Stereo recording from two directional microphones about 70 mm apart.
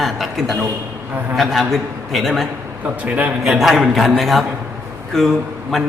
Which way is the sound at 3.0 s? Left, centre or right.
Right.